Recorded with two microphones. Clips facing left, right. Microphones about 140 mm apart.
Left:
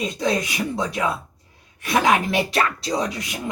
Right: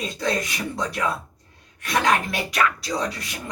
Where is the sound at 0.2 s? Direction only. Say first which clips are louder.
Left 2 dB; 5° left (ahead or behind).